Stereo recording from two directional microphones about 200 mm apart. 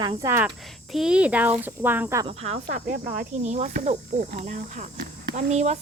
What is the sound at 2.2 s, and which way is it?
Speech, 30° right (ahead or behind).